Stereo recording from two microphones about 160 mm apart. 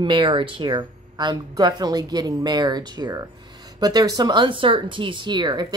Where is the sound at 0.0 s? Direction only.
30° right (ahead or behind).